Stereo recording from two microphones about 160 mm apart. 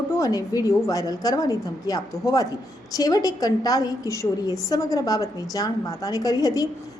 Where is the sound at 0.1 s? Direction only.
20° left (ahead or behind).